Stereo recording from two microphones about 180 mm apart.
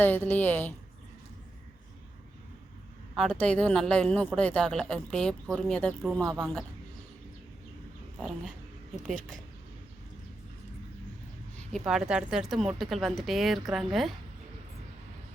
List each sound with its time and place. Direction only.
0.0 s a woman's voice: 10° left (ahead or behind)
3.2 s speech: 5° left (ahead or behind)
6.2 s a woman's voice: 20° right (ahead or behind)
9.0 s speech: 5° left (ahead or behind)
11.9 s speech: 5° right (ahead or behind)